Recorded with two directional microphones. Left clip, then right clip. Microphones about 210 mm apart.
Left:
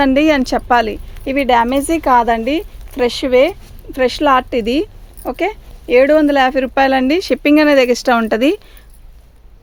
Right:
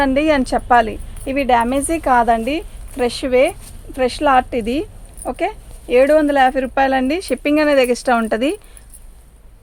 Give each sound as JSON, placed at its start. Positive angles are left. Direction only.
{"t": 0.0, "sound": "speech", "side_deg": 45}